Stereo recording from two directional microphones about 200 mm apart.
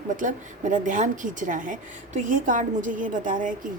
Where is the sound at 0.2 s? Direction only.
40° right (ahead or behind).